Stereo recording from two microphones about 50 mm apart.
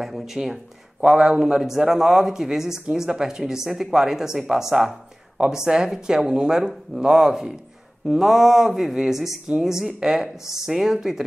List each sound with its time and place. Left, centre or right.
0.2 s a man's voice: centre